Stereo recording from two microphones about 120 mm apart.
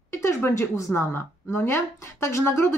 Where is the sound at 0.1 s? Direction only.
20° left (ahead or behind).